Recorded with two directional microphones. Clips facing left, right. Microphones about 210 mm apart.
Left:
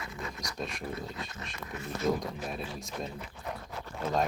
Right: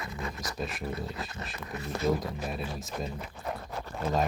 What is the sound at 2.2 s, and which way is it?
Speech, centre (ahead or behind).